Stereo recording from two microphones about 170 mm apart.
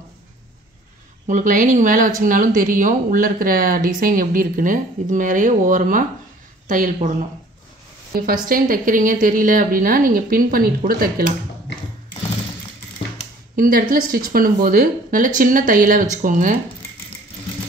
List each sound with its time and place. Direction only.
1.2 s speech: 50° right (ahead or behind)
8.1 s a woman's voice: 55° right (ahead or behind)
13.6 s a woman's voice: 55° right (ahead or behind)